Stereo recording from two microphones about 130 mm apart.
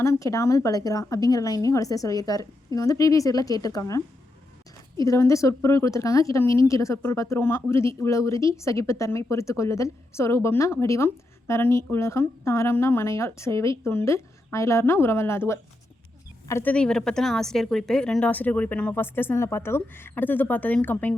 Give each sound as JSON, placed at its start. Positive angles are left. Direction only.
{"t": 0.0, "sound": "a woman's voice", "side_deg": 25}
{"t": 5.0, "sound": "a woman's voice", "side_deg": 25}
{"t": 16.7, "sound": "speech", "side_deg": 5}